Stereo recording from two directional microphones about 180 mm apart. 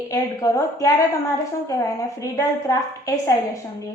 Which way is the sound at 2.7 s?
20° left (ahead or behind).